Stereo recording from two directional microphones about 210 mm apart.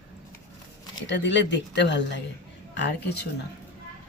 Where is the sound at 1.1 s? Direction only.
55° left (ahead or behind).